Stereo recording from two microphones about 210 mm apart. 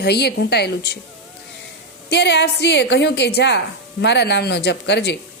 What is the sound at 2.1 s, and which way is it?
A man's voice, 55° left (ahead or behind).